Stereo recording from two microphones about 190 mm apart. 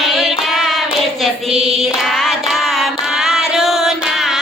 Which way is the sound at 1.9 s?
Centre (ahead or behind).